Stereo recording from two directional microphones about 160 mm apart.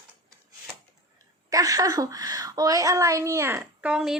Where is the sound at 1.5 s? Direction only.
20° right (ahead or behind).